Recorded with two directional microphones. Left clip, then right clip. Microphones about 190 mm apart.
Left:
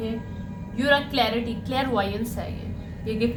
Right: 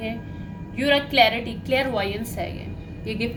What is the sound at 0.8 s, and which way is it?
A woman's voice, 40° right (ahead or behind).